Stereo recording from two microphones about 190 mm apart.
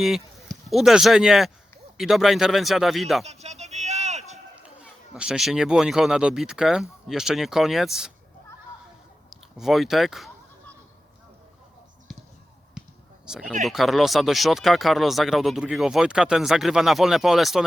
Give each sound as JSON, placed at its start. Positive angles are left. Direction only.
{"t": 0.0, "sound": "speech", "side_deg": 0}
{"t": 3.2, "sound": "a sound", "side_deg": -35}
{"t": 5.1, "sound": "speech", "side_deg": -5}
{"t": 9.3, "sound": "bleat", "side_deg": 0}
{"t": 12.1, "sound": "basketball bounce", "side_deg": 0}
{"t": 13.2, "sound": "speech", "side_deg": -5}